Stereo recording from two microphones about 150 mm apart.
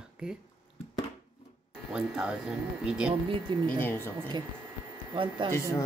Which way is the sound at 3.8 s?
15° left (ahead or behind).